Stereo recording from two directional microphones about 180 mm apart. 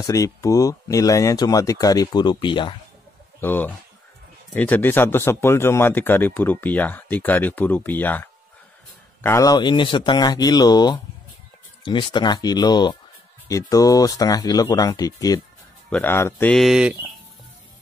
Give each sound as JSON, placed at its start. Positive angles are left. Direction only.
{"t": 0.0, "sound": "speech", "side_deg": 20}
{"t": 3.3, "sound": "speech", "side_deg": 10}
{"t": 16.5, "sound": "speech", "side_deg": -5}